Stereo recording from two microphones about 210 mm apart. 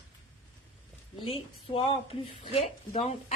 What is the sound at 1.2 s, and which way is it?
A woman's voice, 25° left (ahead or behind).